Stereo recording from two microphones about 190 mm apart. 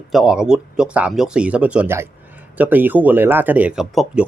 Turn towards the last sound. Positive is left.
turn(degrees=0)  # may be behind; listen again after turning